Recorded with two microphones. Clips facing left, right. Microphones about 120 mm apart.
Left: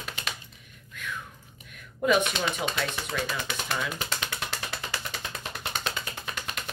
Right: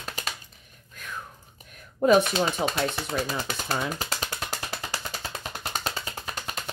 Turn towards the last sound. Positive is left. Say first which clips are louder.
# right 1 dB
turn(degrees=-35)  # may be behind; listen again after turning